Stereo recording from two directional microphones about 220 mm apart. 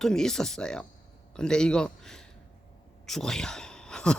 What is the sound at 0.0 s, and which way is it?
Speech, centre (ahead or behind).